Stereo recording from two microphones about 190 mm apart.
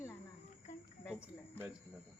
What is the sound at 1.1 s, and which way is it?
Speech, 10° right (ahead or behind).